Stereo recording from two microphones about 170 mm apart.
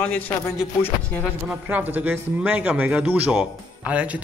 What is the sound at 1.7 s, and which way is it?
Speech, 10° right (ahead or behind).